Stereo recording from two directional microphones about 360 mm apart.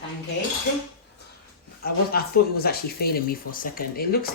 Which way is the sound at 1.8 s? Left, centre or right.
Left.